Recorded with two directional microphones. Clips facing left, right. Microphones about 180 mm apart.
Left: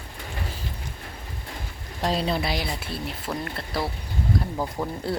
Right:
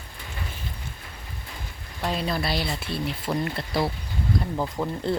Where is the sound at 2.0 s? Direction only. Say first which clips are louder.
Left 2 dB; 30° left (ahead or behind); by 3.0 s 10° left (ahead or behind).